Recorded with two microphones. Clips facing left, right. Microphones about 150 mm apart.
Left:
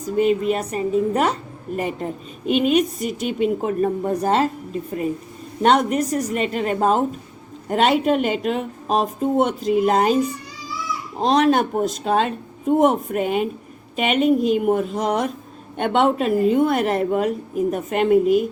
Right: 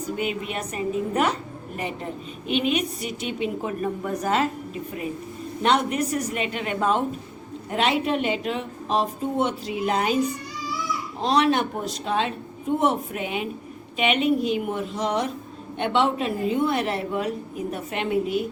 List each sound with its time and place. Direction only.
0.0 s a woman's voice: 40° left (ahead or behind)
11.2 s a woman's voice: 45° left (ahead or behind)